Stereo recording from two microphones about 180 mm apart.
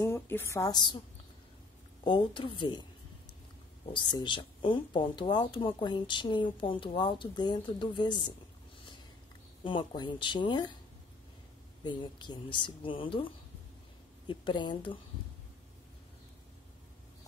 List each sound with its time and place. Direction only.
0.0 s a woman's voice: 15° left (ahead or behind)
2.0 s speech: 25° left (ahead or behind)
3.8 s speech: 25° left (ahead or behind)
9.6 s speech: 25° left (ahead or behind)
11.8 s speech: 25° left (ahead or behind)